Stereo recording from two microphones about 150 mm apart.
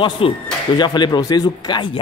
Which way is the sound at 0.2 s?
35° left (ahead or behind).